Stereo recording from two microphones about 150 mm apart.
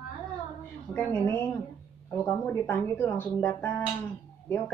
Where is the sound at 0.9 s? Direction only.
10° left (ahead or behind).